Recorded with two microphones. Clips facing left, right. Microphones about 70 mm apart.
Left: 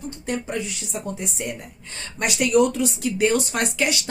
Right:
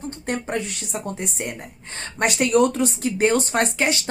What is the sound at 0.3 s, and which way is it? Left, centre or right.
A woman's voice, right.